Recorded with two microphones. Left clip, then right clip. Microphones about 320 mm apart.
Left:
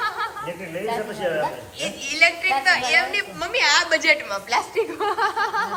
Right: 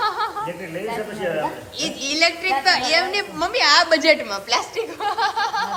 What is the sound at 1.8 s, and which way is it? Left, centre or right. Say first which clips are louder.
A woman's voice: left 1 dB; centre.